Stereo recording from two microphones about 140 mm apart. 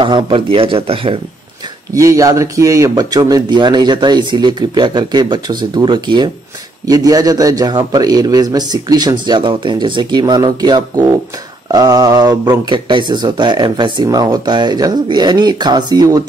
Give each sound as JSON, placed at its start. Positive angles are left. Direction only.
{"t": 0.0, "sound": "speech", "side_deg": -40}
{"t": 2.0, "sound": "a man's voice", "side_deg": -25}